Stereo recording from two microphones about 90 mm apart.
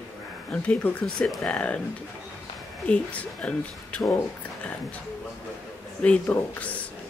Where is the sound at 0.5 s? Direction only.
15° left (ahead or behind).